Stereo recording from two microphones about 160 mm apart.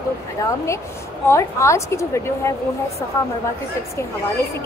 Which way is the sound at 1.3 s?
20° left (ahead or behind).